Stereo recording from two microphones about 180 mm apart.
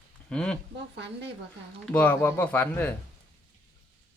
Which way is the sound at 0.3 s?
5° left (ahead or behind).